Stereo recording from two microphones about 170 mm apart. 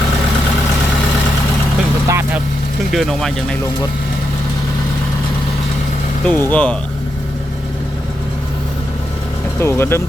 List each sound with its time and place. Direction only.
2.0 s vehicle: 15° right (ahead or behind)
2.9 s speech: centre (ahead or behind)
6.2 s speech: 10° left (ahead or behind)
9.6 s speech: 15° left (ahead or behind)